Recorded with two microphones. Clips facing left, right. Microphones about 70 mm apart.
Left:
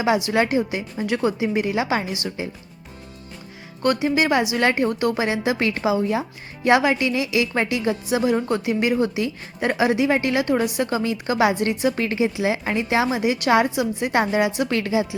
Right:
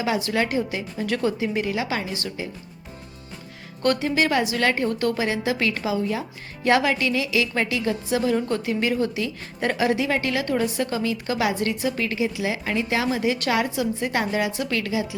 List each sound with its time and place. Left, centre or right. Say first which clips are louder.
0.3 s a woman's voice: left 3 dB; centre
3.8 s a woman's voice: left 2 dB; centre; by 15.0 s left